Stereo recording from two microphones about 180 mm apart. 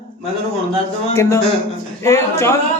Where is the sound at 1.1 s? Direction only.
15° left (ahead or behind).